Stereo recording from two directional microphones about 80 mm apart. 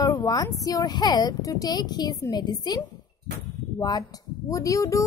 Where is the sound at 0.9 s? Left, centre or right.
Left.